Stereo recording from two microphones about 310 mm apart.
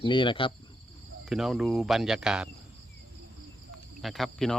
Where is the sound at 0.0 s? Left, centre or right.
Centre.